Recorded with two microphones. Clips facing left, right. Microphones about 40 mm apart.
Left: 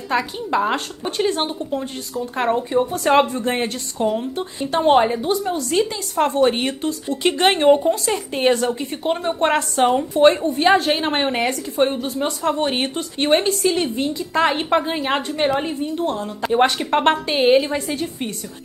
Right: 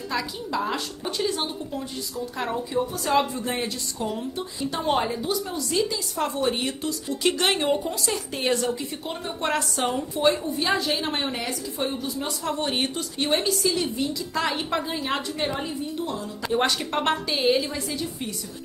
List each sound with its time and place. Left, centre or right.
0.1 s a woman's voice: left
4.1 s a woman's voice: left
10.1 s a woman's voice: left
16.5 s a woman's voice: left